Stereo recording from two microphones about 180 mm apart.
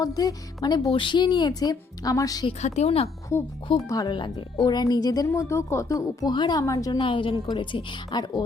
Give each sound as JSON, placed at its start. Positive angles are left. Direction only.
{"t": 0.0, "sound": "speech", "side_deg": 20}
{"t": 2.5, "sound": "a woman's voice", "side_deg": 40}
{"t": 3.3, "sound": "speech", "side_deg": 15}